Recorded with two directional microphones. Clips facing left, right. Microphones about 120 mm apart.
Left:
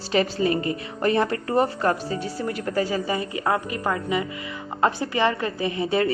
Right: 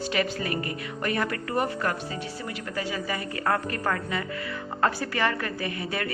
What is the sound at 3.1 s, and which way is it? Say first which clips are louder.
A woman's voice: left 3 dB; 20° left (ahead or behind).